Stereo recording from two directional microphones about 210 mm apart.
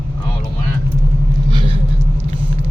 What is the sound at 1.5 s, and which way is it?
Vehicle, 25° right (ahead or behind).